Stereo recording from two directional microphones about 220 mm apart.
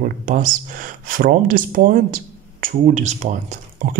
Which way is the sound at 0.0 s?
35° right (ahead or behind).